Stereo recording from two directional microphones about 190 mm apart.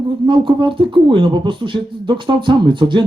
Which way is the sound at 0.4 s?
25° right (ahead or behind).